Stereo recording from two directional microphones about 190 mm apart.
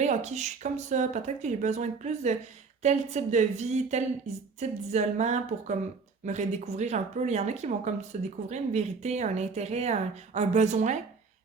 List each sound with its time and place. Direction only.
0.0 s a woman's voice: 35° right (ahead or behind)